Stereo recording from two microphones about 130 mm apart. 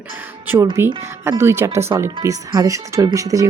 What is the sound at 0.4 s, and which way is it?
Speech, 20° right (ahead or behind).